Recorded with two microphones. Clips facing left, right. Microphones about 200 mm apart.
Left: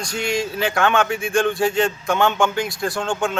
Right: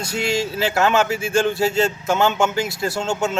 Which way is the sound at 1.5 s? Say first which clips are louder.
Even; 25° right (ahead or behind).